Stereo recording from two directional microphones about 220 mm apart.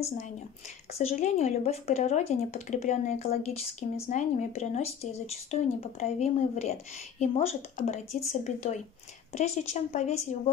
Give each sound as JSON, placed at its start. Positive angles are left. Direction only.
{"t": 0.9, "sound": "a woman's voice", "side_deg": 30}